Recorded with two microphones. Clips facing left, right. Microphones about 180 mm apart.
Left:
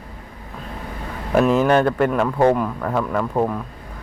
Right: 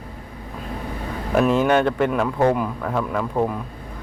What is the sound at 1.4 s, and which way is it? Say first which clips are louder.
Speech: left 2 dB; centre (ahead or behind).